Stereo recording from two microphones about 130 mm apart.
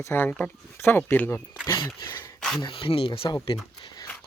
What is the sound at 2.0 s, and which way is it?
Speech, 35° left (ahead or behind).